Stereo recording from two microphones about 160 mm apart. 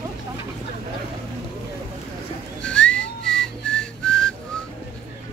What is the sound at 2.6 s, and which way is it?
Whistling, 5° left (ahead or behind).